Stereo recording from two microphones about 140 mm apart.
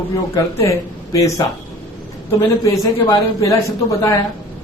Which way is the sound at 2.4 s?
20° left (ahead or behind).